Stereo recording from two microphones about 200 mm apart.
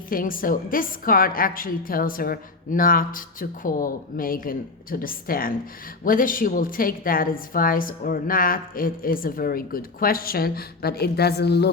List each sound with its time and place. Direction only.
0.1 s a woman's voice: 45° left (ahead or behind)